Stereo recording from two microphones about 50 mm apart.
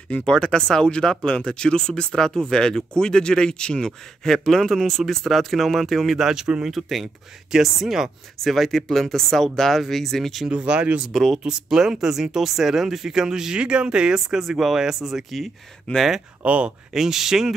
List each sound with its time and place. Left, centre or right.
0.2 s a man's voice: centre
6.1 s speech: centre
6.7 s speech: centre
8.4 s speech: centre
10.5 s speech: right
11.1 s speech: centre
15.9 s speech: left
16.4 s speech: right
16.9 s speech: centre